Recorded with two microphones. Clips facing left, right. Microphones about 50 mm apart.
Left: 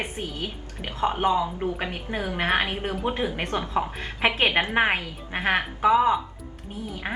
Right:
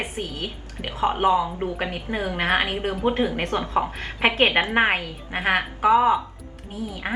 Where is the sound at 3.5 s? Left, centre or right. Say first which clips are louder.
Right 3 dB; right.